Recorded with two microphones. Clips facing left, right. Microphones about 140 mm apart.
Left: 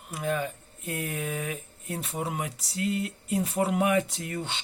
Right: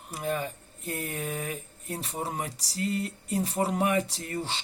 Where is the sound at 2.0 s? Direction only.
35° right (ahead or behind).